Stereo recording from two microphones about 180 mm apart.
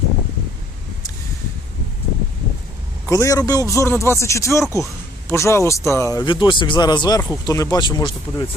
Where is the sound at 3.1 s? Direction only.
20° left (ahead or behind).